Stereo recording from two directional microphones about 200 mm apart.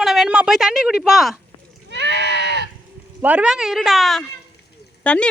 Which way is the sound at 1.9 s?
60° right (ahead or behind).